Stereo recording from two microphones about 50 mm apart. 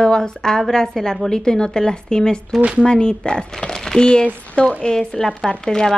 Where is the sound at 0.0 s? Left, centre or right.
Centre.